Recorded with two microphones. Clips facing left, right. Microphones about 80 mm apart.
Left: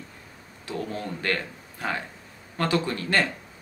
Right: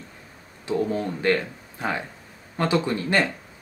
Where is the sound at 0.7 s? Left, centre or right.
Right.